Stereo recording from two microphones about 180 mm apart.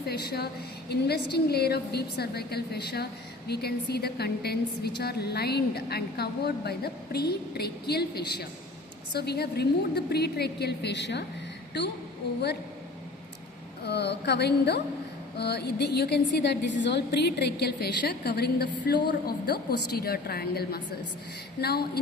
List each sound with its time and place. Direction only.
0.1 s a woman's voice: 60° left (ahead or behind)
13.8 s a woman's voice: 70° left (ahead or behind)